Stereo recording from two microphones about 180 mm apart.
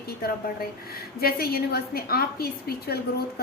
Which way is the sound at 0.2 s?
55° left (ahead or behind).